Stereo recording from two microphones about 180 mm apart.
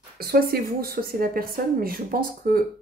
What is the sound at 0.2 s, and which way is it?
A woman's voice, 55° right (ahead or behind).